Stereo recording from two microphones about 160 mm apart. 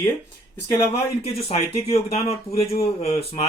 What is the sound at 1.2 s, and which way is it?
Speech, 40° left (ahead or behind).